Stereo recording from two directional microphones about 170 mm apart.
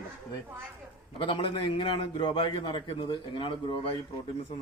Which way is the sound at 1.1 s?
30° left (ahead or behind).